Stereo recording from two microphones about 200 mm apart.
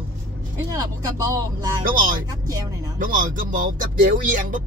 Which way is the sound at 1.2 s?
20° right (ahead or behind).